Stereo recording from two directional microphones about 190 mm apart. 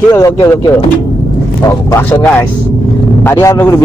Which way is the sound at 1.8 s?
15° left (ahead or behind).